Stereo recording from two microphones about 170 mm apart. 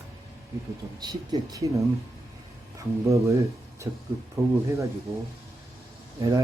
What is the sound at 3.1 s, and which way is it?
Speech, 20° right (ahead or behind).